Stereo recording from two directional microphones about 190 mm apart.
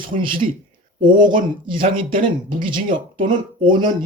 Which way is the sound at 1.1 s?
45° right (ahead or behind).